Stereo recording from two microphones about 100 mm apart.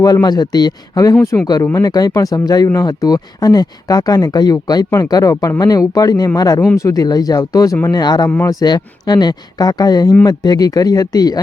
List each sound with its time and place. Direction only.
0.0 s speech: 40° left (ahead or behind)
1.3 s speech: 25° left (ahead or behind)
1.7 s speech: 40° left (ahead or behind)